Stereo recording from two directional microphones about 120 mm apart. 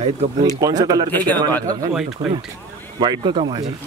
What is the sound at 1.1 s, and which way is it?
Speech, 15° left (ahead or behind).